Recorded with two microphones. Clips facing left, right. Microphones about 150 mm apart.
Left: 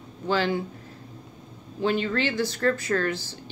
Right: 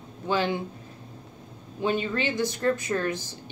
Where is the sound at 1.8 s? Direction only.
20° right (ahead or behind).